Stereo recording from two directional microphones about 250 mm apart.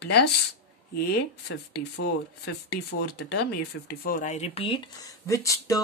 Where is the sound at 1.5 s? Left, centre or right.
Left.